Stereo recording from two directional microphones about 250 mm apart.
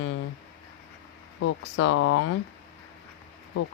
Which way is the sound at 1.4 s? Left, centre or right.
Left.